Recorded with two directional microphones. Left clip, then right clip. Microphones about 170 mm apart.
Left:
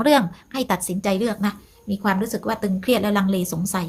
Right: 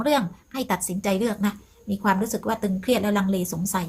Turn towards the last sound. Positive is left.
turn(degrees=20)  # may be behind; listen again after turning